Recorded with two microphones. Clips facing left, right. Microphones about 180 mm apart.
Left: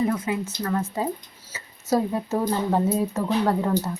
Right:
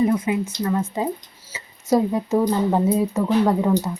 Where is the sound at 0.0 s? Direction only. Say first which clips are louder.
Right 5 dB; 20° right (ahead or behind).